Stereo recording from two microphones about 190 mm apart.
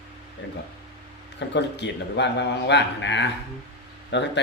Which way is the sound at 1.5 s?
65° left (ahead or behind).